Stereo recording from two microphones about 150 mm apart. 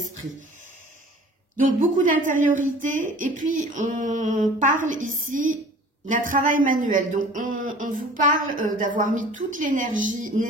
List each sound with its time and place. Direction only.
1.8 s speech: 60° right (ahead or behind)